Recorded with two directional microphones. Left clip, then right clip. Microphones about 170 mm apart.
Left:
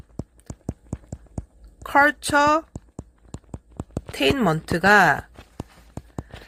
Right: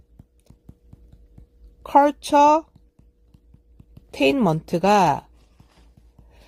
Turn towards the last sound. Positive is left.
turn(degrees=-45)  # may be behind; listen again after turning